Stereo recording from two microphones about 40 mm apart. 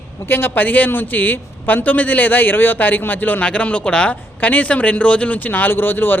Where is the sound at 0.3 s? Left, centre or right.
Left.